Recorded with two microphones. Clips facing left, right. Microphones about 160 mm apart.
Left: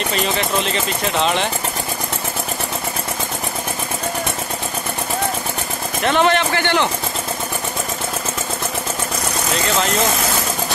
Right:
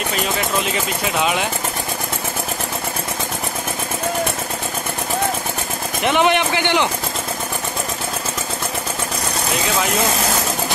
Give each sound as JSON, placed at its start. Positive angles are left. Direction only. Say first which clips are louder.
{"t": 0.7, "sound": "speech", "louder": "left 1 dB", "side_deg": -5}
{"t": 6.0, "sound": "speech", "louder": "even", "side_deg": -15}